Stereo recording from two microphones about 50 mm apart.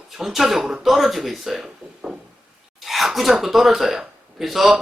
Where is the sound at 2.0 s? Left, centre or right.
Centre.